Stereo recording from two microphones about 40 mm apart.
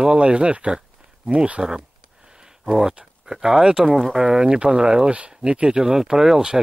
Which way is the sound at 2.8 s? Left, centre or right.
Centre.